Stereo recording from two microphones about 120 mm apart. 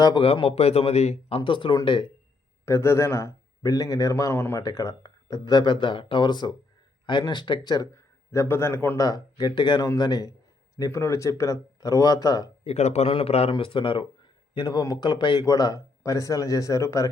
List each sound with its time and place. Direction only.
0.0 s speech: 40° left (ahead or behind)
0.3 s a man's voice: 55° left (ahead or behind)
1.4 s speech: 45° left (ahead or behind)
2.6 s a man's voice: 25° left (ahead or behind)
8.3 s a man's voice: 20° left (ahead or behind)
9.0 s a man's voice: 30° left (ahead or behind)
12.6 s a man's voice: 65° left (ahead or behind); by 17.1 s 25° left (ahead or behind)